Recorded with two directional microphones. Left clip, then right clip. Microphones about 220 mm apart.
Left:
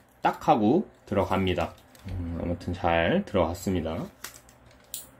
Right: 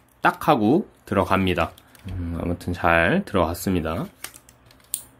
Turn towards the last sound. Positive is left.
turn(degrees=-30)  # may be behind; listen again after turning